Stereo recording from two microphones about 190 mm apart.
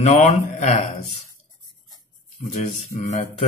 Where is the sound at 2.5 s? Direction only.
40° left (ahead or behind).